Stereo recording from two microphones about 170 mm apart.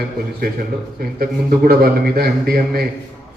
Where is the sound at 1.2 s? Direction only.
65° right (ahead or behind).